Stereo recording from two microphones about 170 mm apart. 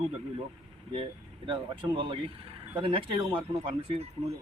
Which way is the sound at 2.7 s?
30° right (ahead or behind).